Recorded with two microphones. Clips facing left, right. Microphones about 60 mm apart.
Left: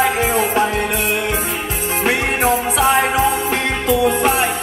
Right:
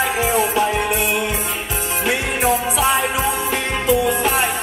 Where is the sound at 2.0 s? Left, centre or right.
Left.